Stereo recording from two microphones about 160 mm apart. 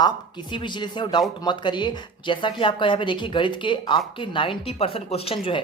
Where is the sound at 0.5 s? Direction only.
30° left (ahead or behind).